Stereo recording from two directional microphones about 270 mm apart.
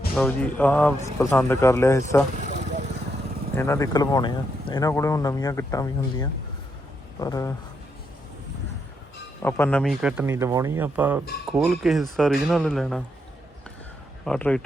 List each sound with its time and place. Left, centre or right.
0.2 s speech: centre
2.4 s vehicle: right
3.6 s speech: centre
9.4 s speech: centre
14.3 s speech: centre